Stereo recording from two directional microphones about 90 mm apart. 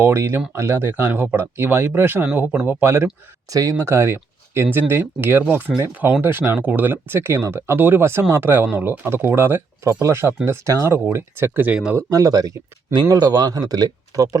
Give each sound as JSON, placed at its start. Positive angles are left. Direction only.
{"t": 0.0, "sound": "speech", "side_deg": -25}
{"t": 3.5, "sound": "speech", "side_deg": -40}
{"t": 3.8, "sound": "speech", "side_deg": -30}
{"t": 12.1, "sound": "speech", "side_deg": -45}